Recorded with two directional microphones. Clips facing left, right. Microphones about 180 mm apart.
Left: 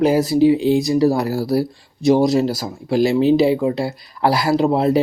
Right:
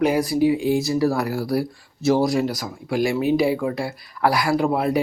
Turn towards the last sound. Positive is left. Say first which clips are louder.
# left 4 dB
turn(degrees=25)  # may be behind; listen again after turning